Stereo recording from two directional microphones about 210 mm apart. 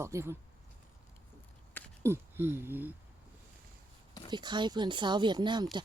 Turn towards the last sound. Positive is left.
turn(degrees=-20)  # may be behind; listen again after turning